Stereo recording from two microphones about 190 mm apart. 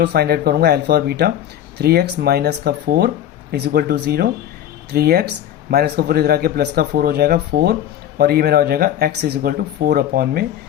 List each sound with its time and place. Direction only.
0.0 s speech: 60° right (ahead or behind)